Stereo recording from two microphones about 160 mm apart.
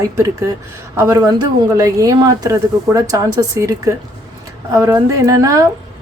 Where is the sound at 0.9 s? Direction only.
20° right (ahead or behind).